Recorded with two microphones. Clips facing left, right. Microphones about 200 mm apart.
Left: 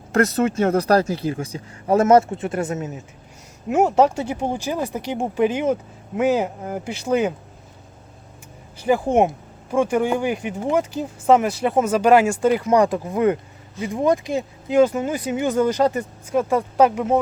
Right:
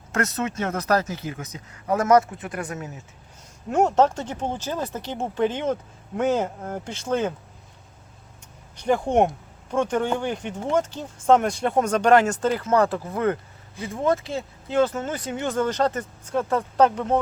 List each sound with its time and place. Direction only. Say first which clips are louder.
0.1 s speech: left 7 dB; 35° left (ahead or behind)
3.7 s speech: left 3 dB; 5° left (ahead or behind)
8.7 s speech: left 3 dB; 5° left (ahead or behind)